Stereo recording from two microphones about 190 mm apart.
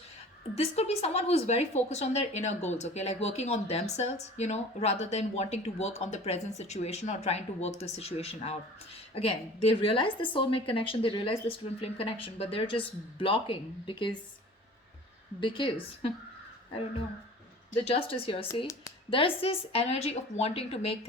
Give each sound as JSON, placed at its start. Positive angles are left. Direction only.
{"t": 0.5, "sound": "a woman's voice", "side_deg": 35}
{"t": 15.4, "sound": "a woman's voice", "side_deg": 25}
{"t": 17.7, "sound": "a woman's voice", "side_deg": 30}